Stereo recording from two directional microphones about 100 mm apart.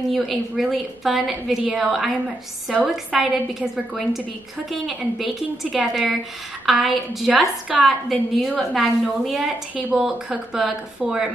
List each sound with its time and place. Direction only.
0.1 s a woman's voice: centre (ahead or behind)